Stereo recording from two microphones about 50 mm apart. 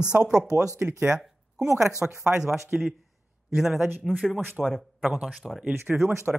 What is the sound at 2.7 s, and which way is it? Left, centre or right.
Speech, right.